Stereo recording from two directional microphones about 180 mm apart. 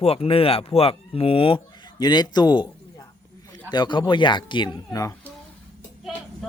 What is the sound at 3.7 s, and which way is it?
Speech, 25° left (ahead or behind).